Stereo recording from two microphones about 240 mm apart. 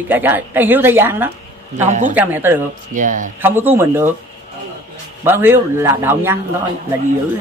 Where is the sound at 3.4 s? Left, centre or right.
Centre.